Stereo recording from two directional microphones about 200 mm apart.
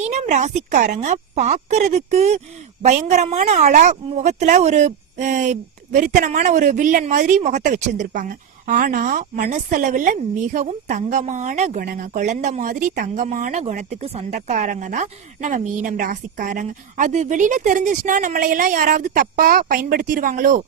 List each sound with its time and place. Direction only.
0.0 s speech: 35° right (ahead or behind)